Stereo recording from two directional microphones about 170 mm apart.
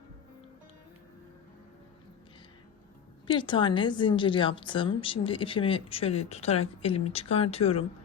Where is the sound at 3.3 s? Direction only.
30° left (ahead or behind).